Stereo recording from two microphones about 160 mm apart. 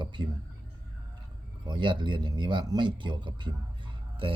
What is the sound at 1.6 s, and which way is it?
Speech, 30° right (ahead or behind).